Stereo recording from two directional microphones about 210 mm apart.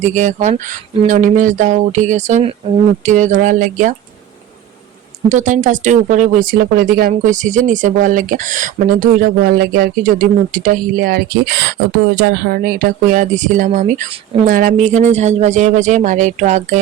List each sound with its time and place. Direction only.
0.0 s speech: 35° right (ahead or behind)
5.3 s speech: 35° right (ahead or behind)